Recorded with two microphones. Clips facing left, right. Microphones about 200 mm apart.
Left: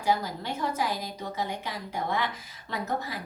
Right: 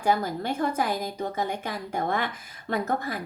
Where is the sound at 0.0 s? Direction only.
50° right (ahead or behind).